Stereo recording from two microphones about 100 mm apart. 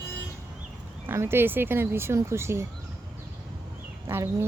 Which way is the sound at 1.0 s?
25° right (ahead or behind).